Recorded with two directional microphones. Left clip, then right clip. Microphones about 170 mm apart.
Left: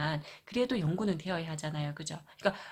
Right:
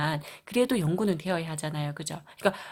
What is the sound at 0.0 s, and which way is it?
Speech, 40° right (ahead or behind).